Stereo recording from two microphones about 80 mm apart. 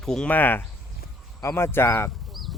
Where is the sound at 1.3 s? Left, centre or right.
Left.